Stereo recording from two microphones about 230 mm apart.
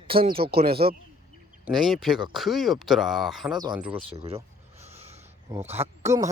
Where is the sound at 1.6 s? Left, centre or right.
Centre.